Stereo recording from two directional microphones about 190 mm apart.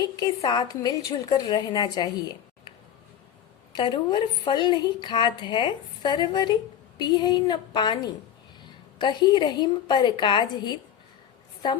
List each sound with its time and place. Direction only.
0.2 s a woman's voice: 20° left (ahead or behind)
3.7 s a woman's voice: 25° left (ahead or behind)